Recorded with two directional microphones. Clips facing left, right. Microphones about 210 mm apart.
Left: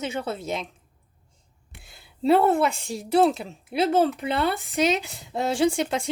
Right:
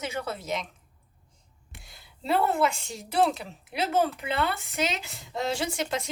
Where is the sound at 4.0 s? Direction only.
30° left (ahead or behind).